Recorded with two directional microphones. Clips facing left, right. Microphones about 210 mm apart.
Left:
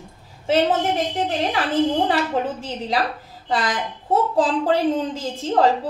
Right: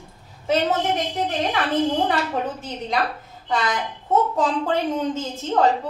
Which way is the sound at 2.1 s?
30° left (ahead or behind).